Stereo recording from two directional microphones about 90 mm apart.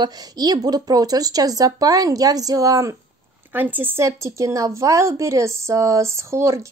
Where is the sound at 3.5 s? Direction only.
20° right (ahead or behind).